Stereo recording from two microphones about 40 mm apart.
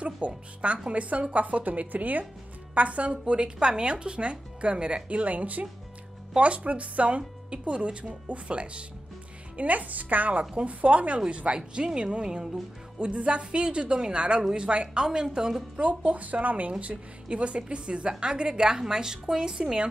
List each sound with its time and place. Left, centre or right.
0.2 s a woman's voice: right; by 15.6 s centre
15.7 s speech: right
16.8 s speech: right